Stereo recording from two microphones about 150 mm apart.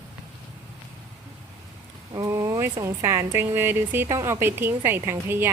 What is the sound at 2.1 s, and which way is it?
A woman's voice, 20° right (ahead or behind).